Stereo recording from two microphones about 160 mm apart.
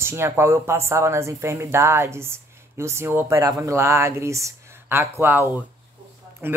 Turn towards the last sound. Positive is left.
turn(degrees=-15)  # may be behind; listen again after turning